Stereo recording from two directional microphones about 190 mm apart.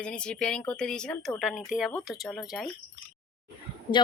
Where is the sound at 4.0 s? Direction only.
25° left (ahead or behind).